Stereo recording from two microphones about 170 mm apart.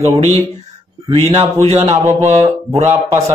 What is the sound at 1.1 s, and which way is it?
Speech, 35° right (ahead or behind).